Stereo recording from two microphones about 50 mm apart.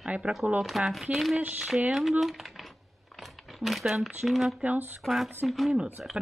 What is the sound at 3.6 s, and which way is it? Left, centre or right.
Speech, centre.